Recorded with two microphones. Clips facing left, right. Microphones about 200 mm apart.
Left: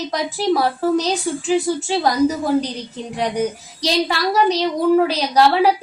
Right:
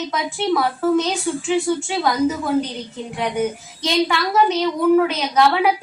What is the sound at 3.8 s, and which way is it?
A woman's voice, 35° left (ahead or behind).